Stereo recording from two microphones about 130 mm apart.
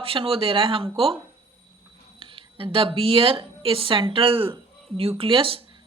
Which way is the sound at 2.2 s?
40° right (ahead or behind).